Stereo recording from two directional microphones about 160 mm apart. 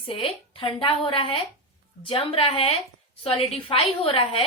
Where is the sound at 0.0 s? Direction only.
35° left (ahead or behind).